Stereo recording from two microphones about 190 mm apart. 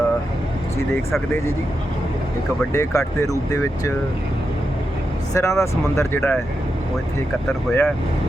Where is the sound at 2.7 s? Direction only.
15° left (ahead or behind).